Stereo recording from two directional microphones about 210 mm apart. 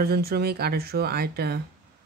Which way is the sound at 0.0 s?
50° right (ahead or behind).